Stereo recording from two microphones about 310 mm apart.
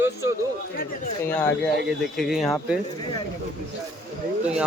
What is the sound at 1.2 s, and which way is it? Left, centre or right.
Speech, centre.